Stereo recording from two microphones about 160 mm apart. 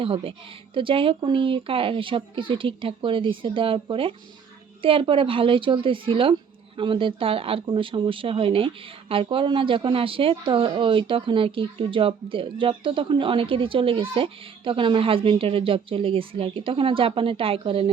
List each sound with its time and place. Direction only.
0.0 s speech: 35° right (ahead or behind)